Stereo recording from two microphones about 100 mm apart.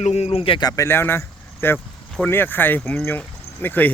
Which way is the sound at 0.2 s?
80° left.